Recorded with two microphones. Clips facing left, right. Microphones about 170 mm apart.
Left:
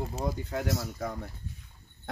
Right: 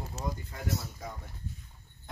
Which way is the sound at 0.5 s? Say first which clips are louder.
Left 5 dB; 75° left (ahead or behind).